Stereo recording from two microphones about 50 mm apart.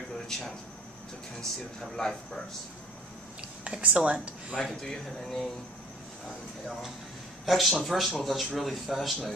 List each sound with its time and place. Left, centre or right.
1.4 s speech: centre
3.9 s speech: right
4.6 s speech: centre
7.4 s speech: centre